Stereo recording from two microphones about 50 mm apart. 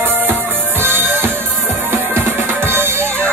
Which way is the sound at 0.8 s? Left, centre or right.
Right.